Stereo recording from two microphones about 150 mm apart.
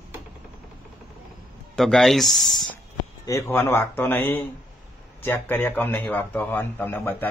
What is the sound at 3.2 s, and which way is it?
A man's voice, 20° left (ahead or behind).